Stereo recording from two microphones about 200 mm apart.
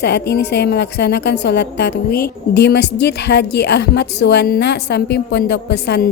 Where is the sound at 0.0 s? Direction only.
55° left (ahead or behind).